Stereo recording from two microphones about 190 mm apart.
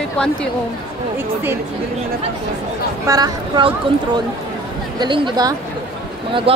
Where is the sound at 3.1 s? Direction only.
20° right (ahead or behind).